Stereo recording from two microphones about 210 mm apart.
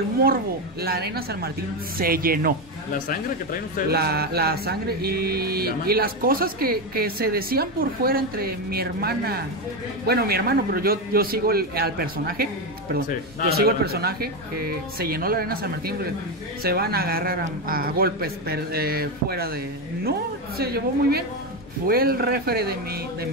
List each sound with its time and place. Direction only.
0.8 s music: 45° right (ahead or behind)
3.9 s music: 50° right (ahead or behind)
13.5 s music: 50° right (ahead or behind)